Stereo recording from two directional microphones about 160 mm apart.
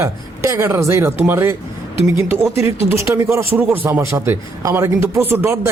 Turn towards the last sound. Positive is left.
turn(degrees=-15)  # may be behind; listen again after turning